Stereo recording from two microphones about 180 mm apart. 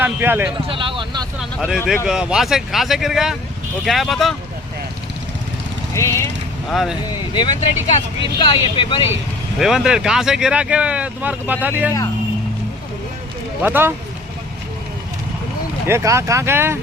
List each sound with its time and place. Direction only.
0.0 s speech: 10° right (ahead or behind)
0.7 s speech: 30° right (ahead or behind)
1.4 s speech: 5° right (ahead or behind)
5.9 s speech: 15° left (ahead or behind)
6.7 s speech: centre (ahead or behind)
7.1 s speech: 25° left (ahead or behind)
9.6 s speech: 5° right (ahead or behind)
13.6 s speech: 10° right (ahead or behind)
15.9 s speech: 15° right (ahead or behind)